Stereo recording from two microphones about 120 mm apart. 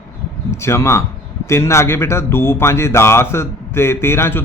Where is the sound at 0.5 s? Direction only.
20° left (ahead or behind).